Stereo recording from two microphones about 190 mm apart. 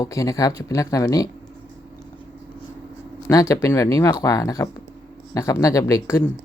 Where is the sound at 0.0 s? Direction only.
15° left (ahead or behind).